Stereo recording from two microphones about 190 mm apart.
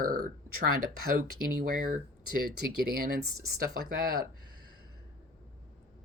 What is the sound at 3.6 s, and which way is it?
Speech, 50° right (ahead or behind).